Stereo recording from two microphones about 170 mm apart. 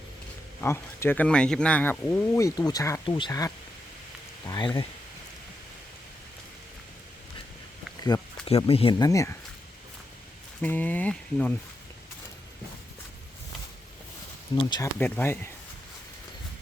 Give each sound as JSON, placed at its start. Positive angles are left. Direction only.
{"t": 0.6, "sound": "speech", "side_deg": 15}
{"t": 8.5, "sound": "speech", "side_deg": 30}
{"t": 10.6, "sound": "speech", "side_deg": 10}
{"t": 14.5, "sound": "speech", "side_deg": 25}
{"t": 14.9, "sound": "speech", "side_deg": 10}